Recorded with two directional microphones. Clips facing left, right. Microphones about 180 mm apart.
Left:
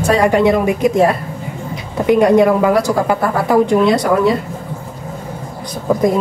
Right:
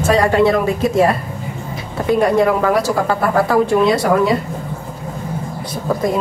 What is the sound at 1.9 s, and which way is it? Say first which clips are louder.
Speech: left 4 dB; 20° left (ahead or behind).